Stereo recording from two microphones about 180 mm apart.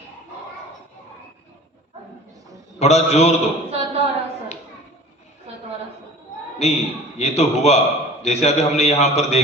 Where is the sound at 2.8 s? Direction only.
35° left (ahead or behind).